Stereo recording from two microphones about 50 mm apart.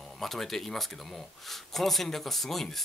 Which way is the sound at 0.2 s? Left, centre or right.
Centre.